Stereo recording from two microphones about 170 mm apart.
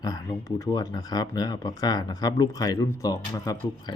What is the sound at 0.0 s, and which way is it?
Speech, 20° left (ahead or behind).